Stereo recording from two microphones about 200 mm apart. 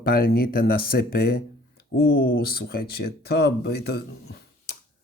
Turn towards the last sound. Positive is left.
turn(degrees=55)  # may be behind; listen again after turning